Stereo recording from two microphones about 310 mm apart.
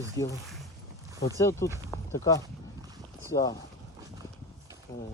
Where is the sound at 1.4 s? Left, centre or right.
Centre.